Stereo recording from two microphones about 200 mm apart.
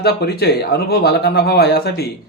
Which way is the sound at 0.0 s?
55° left (ahead or behind).